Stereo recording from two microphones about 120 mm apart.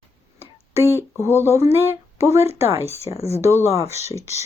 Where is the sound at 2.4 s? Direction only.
60° left (ahead or behind).